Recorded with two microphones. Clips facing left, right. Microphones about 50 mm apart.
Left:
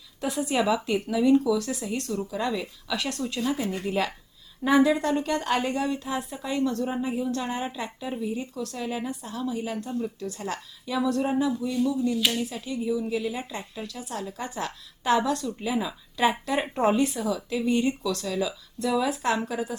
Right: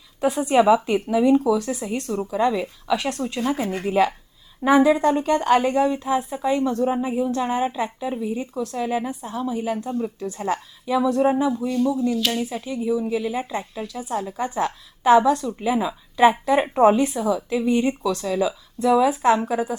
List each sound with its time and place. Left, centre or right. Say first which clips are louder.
0.2 s a woman's voice: right 8 dB; right
3.7 s speech: right 5 dB; right
4.6 s a woman's voice: right 5 dB; centre